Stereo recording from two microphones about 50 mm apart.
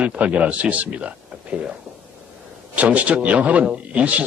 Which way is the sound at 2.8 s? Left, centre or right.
Right.